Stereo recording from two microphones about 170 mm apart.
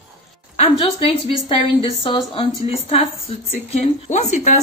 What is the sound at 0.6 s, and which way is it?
Speech, 35° left (ahead or behind).